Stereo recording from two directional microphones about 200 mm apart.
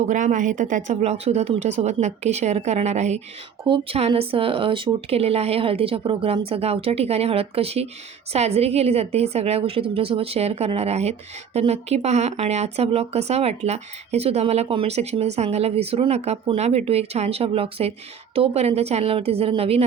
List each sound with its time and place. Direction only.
0.1 s speech: 40° right (ahead or behind)